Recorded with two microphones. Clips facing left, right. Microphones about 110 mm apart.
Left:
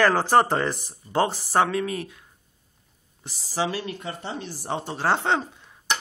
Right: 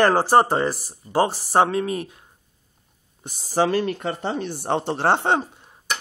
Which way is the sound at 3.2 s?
50° right (ahead or behind).